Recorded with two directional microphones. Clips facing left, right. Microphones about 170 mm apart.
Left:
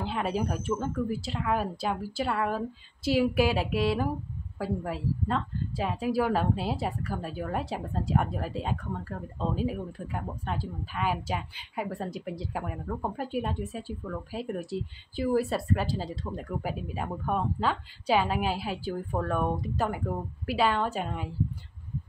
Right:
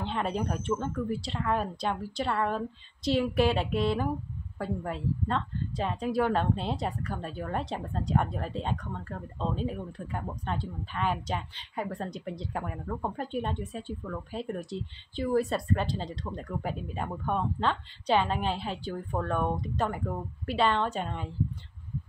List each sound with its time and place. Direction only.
0.0 s a woman's voice: 5° left (ahead or behind)